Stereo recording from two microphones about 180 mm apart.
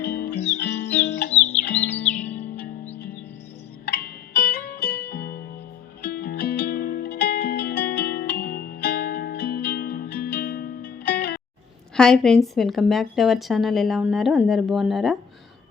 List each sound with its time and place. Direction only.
0.0 s music: 65° left (ahead or behind)
0.3 s music: 40° left (ahead or behind)
0.6 s music: 70° left (ahead or behind)
1.3 s music: 40° left (ahead or behind)
1.6 s music: 10° left (ahead or behind)
3.8 s music: 60° left (ahead or behind)
11.9 s speech: 5° left (ahead or behind)